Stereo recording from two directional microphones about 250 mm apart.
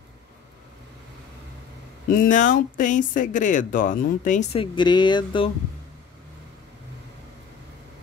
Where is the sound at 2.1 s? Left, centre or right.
Left.